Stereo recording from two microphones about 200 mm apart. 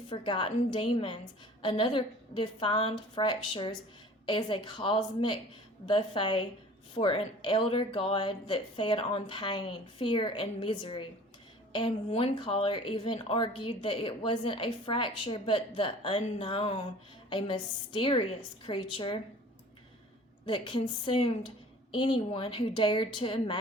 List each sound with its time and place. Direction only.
0.1 s speech: 25° left (ahead or behind)
20.5 s speech: 25° left (ahead or behind)